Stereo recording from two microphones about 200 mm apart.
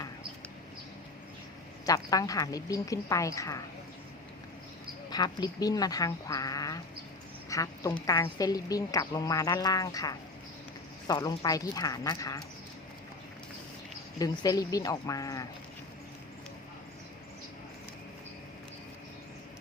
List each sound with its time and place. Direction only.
1.9 s a woman's voice: 15° left (ahead or behind)
5.1 s a woman's voice: 20° left (ahead or behind)
14.2 s a woman's voice: 20° left (ahead or behind)